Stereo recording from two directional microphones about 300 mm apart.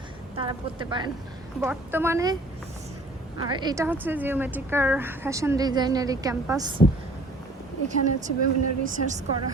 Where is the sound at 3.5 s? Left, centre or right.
Centre.